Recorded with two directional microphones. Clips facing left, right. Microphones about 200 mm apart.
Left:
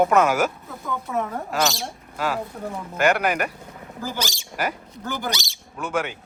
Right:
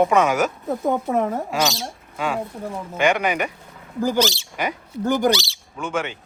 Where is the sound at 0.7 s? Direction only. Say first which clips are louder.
Right 7 dB; 45° right (ahead or behind).